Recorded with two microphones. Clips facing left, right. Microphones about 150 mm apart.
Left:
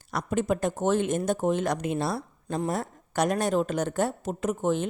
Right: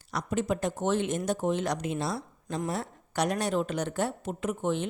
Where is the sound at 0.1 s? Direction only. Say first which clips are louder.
Left 3 dB; 50° left (ahead or behind).